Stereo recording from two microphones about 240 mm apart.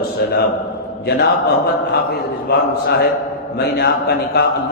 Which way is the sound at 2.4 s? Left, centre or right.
Left.